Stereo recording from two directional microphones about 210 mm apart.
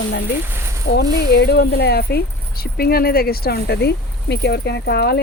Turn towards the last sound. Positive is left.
turn(degrees=50)  # may be behind; listen again after turning